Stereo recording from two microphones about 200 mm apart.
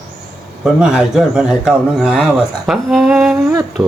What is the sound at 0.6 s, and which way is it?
Speech, 5° right (ahead or behind).